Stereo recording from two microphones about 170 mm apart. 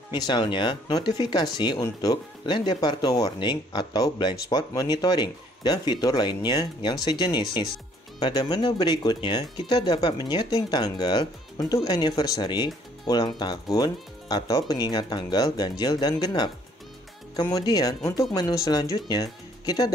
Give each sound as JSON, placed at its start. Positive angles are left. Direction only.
{"t": 0.1, "sound": "speech", "side_deg": 25}